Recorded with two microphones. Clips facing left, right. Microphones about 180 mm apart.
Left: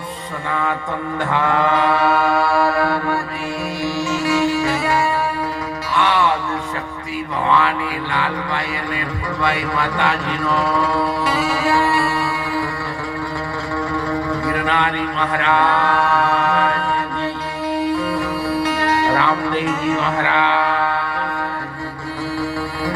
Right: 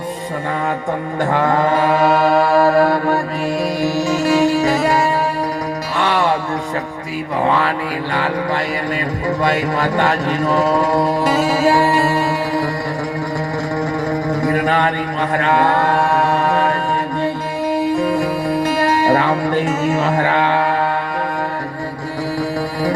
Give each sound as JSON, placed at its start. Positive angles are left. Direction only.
{"t": 1.2, "sound": "mantra", "side_deg": -45}
{"t": 3.8, "sound": "music", "side_deg": -40}
{"t": 7.4, "sound": "a sound", "side_deg": -40}
{"t": 9.4, "sound": "mantra", "side_deg": -45}
{"t": 14.1, "sound": "mantra", "side_deg": -40}
{"t": 17.9, "sound": "music", "side_deg": -45}
{"t": 22.4, "sound": "music", "side_deg": -40}